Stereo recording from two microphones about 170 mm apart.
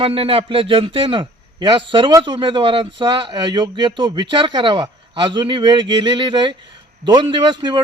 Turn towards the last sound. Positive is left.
turn(degrees=-25)  # may be behind; listen again after turning